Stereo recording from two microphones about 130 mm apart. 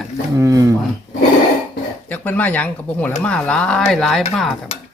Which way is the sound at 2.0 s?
10° left (ahead or behind).